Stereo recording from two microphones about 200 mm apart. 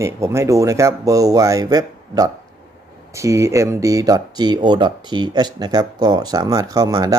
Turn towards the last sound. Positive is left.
turn(degrees=-20)  # may be behind; listen again after turning